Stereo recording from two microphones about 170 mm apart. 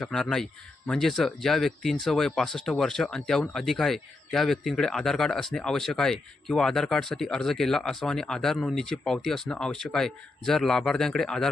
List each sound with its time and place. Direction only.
0.0 s speech: 5° left (ahead or behind)